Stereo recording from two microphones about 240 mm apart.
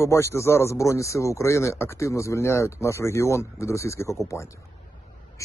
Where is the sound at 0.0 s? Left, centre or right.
Centre.